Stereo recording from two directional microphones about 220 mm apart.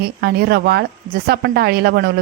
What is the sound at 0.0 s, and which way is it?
Speech, 45° right (ahead or behind).